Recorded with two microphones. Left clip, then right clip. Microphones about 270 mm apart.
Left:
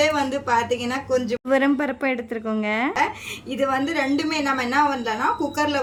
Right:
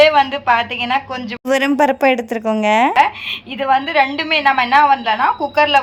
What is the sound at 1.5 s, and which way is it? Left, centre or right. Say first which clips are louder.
A woman's voice: right 7 dB; centre.